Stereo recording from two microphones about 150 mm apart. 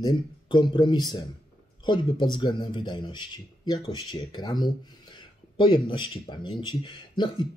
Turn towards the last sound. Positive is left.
turn(degrees=30)  # may be behind; listen again after turning